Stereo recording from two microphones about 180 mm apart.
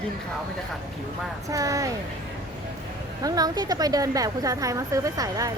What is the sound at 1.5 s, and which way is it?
Speech, 20° right (ahead or behind).